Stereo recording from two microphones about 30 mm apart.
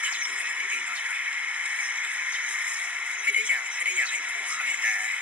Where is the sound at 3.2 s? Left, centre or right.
Right.